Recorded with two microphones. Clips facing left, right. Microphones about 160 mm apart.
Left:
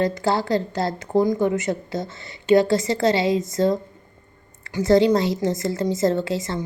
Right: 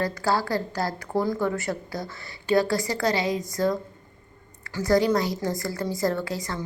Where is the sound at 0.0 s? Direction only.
20° left (ahead or behind).